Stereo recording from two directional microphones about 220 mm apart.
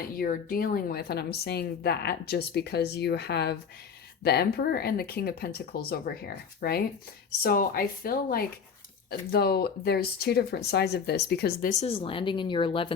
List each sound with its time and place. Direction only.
0.0 s a woman's voice: 40° left (ahead or behind)
11.8 s speech: 25° left (ahead or behind)